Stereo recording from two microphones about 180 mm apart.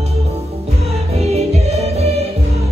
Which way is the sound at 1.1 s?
35° right (ahead or behind).